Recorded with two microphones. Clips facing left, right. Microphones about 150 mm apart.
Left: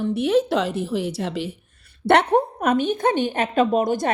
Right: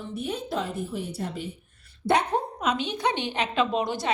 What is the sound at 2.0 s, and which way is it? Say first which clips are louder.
A woman's voice: left 7 dB; 70° left (ahead or behind).